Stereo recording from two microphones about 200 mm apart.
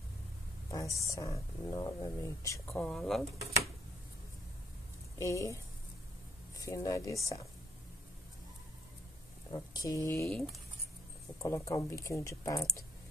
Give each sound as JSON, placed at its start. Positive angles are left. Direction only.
{"t": 0.7, "sound": "speech", "side_deg": 15}
{"t": 2.7, "sound": "speech", "side_deg": 5}
{"t": 5.2, "sound": "speech", "side_deg": 15}
{"t": 6.6, "sound": "speech", "side_deg": 15}
{"t": 9.5, "sound": "speech", "side_deg": 20}
{"t": 11.4, "sound": "speech", "side_deg": 15}